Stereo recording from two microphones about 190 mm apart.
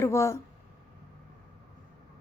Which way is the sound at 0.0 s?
15° left (ahead or behind).